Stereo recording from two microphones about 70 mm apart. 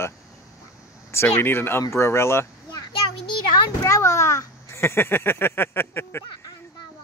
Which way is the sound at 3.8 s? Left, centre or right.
Left.